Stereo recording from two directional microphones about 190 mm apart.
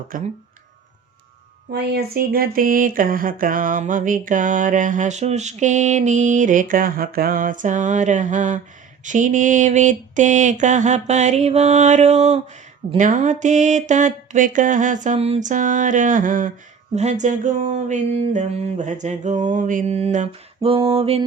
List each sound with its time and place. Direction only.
0.1 s speech: 45° right (ahead or behind)
1.7 s speech: 60° right (ahead or behind); by 8.6 s 40° right (ahead or behind)
9.0 s a sound: 40° right (ahead or behind)